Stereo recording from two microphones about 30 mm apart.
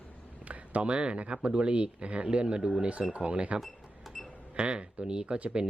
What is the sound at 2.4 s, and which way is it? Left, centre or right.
Speech, right.